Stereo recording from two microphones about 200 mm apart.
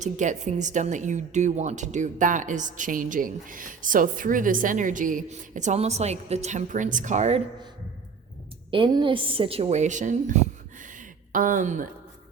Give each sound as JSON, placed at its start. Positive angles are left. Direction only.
{"t": 0.0, "sound": "a woman's voice", "side_deg": -35}
{"t": 8.7, "sound": "a woman's voice", "side_deg": -25}
{"t": 10.8, "sound": "a sound", "side_deg": -40}